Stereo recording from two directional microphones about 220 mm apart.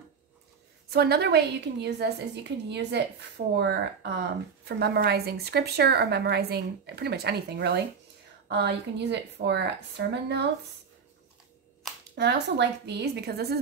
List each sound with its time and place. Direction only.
0.8 s a woman's voice: 45° right (ahead or behind)
12.2 s a woman's voice: 50° right (ahead or behind)